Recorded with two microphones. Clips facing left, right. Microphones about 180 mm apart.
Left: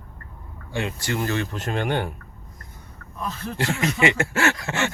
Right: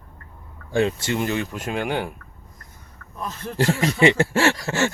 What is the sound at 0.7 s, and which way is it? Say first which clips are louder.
Speech: right 6 dB; 30° right (ahead or behind).